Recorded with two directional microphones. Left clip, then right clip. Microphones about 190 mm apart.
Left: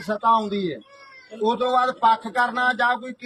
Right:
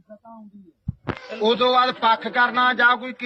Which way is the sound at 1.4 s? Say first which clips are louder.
Right 2 dB; 10° left (ahead or behind).